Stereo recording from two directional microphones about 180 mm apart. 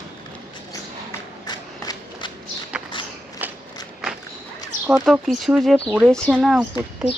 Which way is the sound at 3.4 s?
10° right (ahead or behind).